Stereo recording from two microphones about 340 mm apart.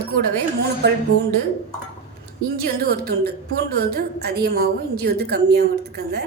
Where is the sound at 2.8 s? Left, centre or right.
Right.